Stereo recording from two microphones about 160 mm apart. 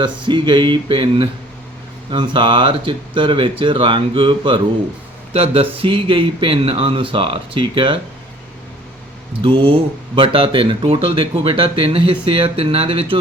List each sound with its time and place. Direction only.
0.0 s speech: 30° right (ahead or behind)
9.4 s speech: 35° right (ahead or behind)